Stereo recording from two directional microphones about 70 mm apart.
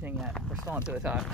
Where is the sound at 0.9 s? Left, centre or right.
Centre.